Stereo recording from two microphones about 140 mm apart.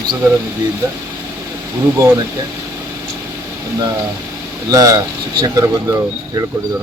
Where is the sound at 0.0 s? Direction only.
30° right (ahead or behind).